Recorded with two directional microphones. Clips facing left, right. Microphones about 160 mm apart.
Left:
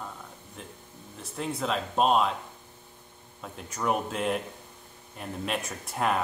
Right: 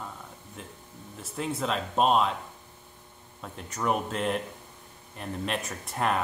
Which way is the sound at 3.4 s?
Centre (ahead or behind).